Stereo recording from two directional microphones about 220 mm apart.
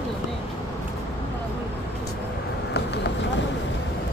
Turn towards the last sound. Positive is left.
turn(degrees=50)  # may be behind; listen again after turning